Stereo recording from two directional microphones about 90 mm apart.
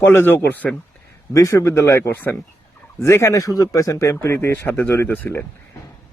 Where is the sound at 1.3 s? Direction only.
35° left (ahead or behind); by 5.5 s 20° left (ahead or behind).